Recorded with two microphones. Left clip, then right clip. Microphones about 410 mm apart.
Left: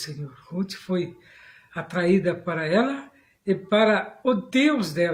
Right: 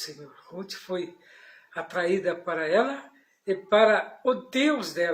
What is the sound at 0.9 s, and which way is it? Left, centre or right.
Speech, left.